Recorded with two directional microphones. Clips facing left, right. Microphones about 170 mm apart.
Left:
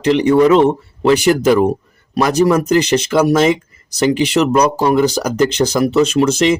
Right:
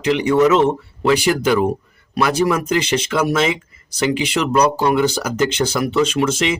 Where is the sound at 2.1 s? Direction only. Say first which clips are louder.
Left 4 dB; 40° left (ahead or behind).